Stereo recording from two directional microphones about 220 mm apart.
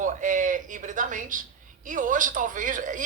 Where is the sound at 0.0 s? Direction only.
35° right (ahead or behind).